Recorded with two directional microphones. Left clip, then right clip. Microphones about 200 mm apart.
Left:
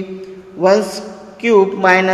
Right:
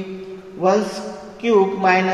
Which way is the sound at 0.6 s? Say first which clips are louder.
Left 5 dB; 50° left (ahead or behind).